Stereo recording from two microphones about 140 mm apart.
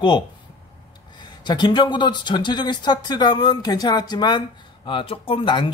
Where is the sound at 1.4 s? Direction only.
35° left (ahead or behind).